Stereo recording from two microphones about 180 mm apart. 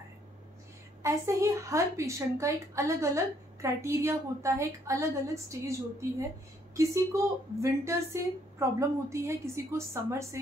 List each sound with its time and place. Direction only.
1.0 s a woman's voice: 15° right (ahead or behind)